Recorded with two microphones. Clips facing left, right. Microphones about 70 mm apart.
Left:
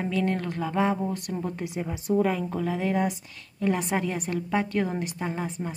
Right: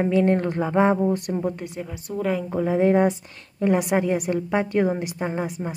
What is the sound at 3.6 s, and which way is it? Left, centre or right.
A woman's voice, centre.